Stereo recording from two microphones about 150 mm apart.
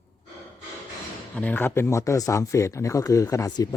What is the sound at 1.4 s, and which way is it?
Speech, 10° left (ahead or behind).